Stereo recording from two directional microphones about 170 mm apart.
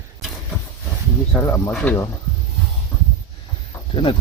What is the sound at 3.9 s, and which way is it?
Speech, 30° left (ahead or behind).